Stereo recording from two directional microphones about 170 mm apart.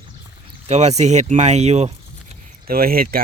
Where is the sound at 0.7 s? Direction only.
40° right (ahead or behind).